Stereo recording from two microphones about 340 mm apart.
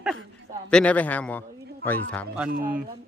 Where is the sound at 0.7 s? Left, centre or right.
Centre.